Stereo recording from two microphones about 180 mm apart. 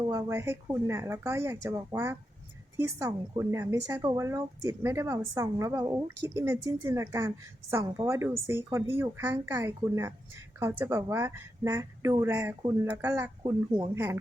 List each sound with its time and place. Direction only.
0.0 s a woman's voice: 20° right (ahead or behind)
13.4 s speech: 25° right (ahead or behind)
13.9 s a woman's voice: 15° right (ahead or behind)